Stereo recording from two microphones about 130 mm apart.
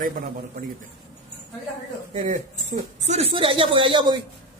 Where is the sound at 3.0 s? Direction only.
55° right (ahead or behind); by 4.2 s 35° right (ahead or behind).